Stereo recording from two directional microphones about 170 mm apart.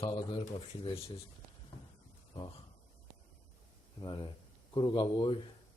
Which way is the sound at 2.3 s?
30° left (ahead or behind).